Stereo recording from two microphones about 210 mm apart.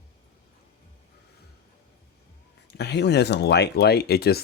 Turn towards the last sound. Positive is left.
turn(degrees=50)  # may be behind; listen again after turning